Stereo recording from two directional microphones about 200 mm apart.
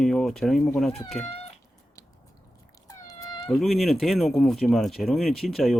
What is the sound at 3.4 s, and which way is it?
Speech, centre (ahead or behind).